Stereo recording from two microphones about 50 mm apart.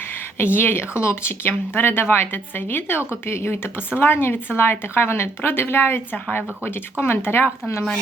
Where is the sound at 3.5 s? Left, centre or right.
Left.